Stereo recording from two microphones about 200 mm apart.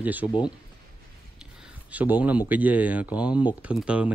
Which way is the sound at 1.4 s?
5° right (ahead or behind).